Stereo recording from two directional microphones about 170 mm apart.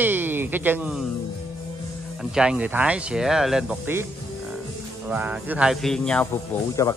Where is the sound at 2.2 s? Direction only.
5° right (ahead or behind).